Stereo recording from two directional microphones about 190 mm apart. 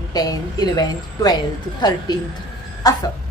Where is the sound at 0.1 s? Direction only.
20° left (ahead or behind).